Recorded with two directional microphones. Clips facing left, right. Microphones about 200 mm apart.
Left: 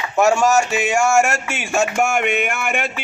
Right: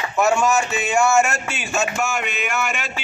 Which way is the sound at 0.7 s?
90° left.